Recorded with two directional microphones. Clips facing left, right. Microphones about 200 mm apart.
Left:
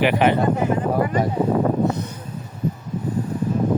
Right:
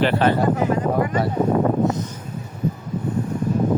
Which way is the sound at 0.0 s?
15° left (ahead or behind).